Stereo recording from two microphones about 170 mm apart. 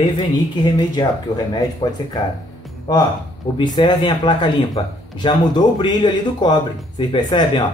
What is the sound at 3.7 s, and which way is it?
Speech, 25° left (ahead or behind).